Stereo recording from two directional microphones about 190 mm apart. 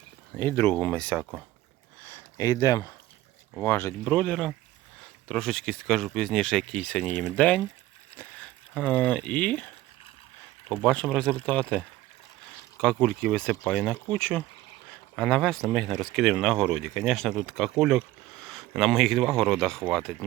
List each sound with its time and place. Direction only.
0.3 s speech: 10° left (ahead or behind)
2.0 s a sound: 10° left (ahead or behind)
3.6 s speech: 15° left (ahead or behind)
8.7 s speech: 5° left (ahead or behind)
10.7 s speech: 5° left (ahead or behind)